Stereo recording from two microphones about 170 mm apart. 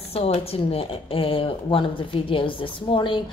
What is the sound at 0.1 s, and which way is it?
A woman's voice, 35° left (ahead or behind).